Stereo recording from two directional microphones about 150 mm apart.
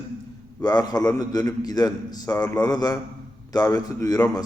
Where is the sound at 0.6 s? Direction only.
25° left (ahead or behind).